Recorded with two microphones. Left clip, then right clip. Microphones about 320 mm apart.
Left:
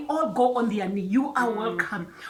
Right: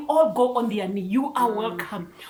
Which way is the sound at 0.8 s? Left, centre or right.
Centre.